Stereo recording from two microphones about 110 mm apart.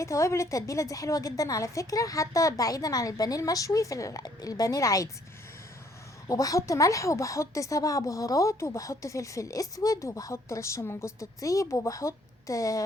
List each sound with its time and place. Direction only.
0.0 s a woman's voice: 25° left (ahead or behind)
6.2 s speech: 30° left (ahead or behind)